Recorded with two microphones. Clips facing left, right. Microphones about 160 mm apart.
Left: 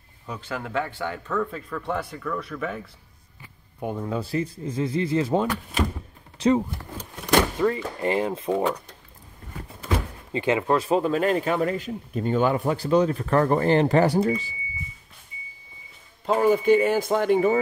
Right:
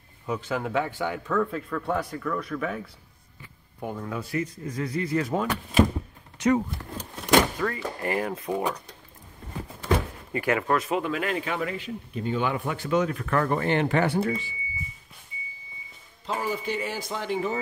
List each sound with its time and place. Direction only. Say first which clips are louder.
0.6 s speech: left 1 dB; 10° right (ahead or behind)
1.3 s speech: right 2 dB; centre (ahead or behind)
3.8 s speech: left 4 dB; 20° left (ahead or behind)
10.3 s speech: left 3 dB; 25° left (ahead or behind)
16.3 s speech: left 11 dB; 55° left (ahead or behind)